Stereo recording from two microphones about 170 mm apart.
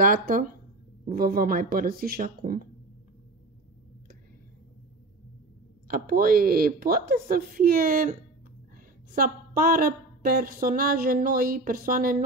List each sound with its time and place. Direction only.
0.0 s a woman's voice: 55° right (ahead or behind)
5.9 s a woman's voice: 60° right (ahead or behind)